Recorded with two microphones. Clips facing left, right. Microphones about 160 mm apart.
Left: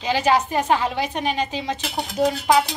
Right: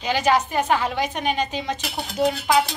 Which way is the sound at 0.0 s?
30° left (ahead or behind).